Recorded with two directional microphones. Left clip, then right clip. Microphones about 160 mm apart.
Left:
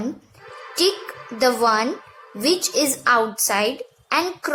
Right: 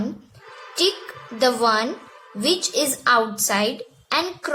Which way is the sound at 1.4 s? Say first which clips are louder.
Left 1 dB; 20° right (ahead or behind).